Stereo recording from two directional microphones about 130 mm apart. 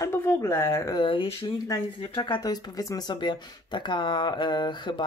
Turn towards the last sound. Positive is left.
turn(degrees=35)  # may be behind; listen again after turning